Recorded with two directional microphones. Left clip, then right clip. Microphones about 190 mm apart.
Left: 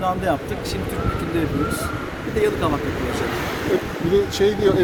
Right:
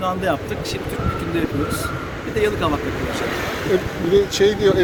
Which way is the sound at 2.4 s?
5° left (ahead or behind).